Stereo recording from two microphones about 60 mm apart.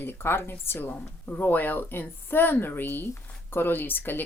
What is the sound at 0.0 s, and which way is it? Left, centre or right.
Speech, left.